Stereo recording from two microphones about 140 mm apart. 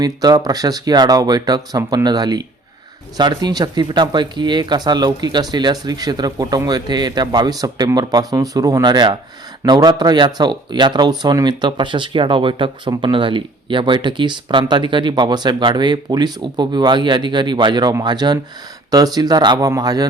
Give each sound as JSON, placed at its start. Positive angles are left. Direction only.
{"t": 0.0, "sound": "speech", "side_deg": -30}